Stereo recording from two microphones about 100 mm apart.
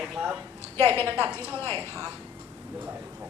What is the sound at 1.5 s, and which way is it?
Speech, 25° left (ahead or behind).